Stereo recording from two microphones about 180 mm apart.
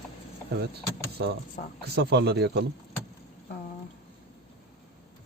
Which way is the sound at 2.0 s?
70° right (ahead or behind).